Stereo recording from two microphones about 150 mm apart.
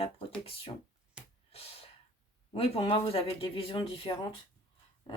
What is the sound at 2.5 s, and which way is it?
Speech, 40° left (ahead or behind).